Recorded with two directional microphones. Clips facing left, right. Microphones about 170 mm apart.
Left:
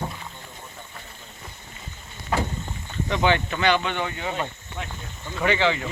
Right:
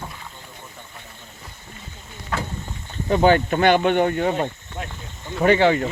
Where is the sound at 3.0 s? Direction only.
40° right (ahead or behind).